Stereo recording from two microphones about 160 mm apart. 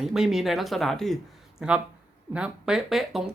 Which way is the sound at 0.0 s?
Centre (ahead or behind).